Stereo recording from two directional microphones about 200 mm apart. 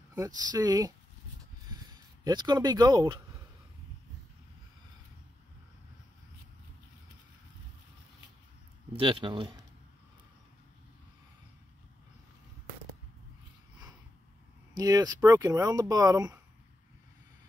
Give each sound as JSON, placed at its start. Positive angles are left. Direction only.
{"t": 0.1, "sound": "speech", "side_deg": -20}
{"t": 1.7, "sound": "a sound", "side_deg": -20}
{"t": 8.9, "sound": "speech", "side_deg": -25}
{"t": 14.7, "sound": "speech", "side_deg": -20}